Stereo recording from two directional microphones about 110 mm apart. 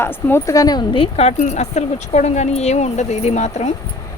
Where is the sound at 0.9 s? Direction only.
60° left (ahead or behind); by 3.7 s 90° left.